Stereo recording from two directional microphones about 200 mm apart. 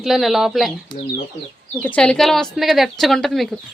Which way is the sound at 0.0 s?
Centre (ahead or behind).